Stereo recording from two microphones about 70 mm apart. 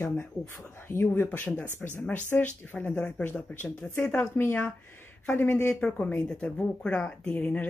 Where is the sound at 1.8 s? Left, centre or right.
Centre.